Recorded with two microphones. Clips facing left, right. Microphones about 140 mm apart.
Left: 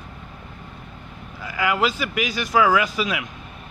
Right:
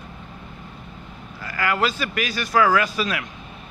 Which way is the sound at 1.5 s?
15° left (ahead or behind).